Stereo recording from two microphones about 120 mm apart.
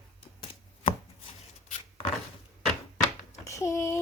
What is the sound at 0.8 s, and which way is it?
Chopping, 55° left (ahead or behind).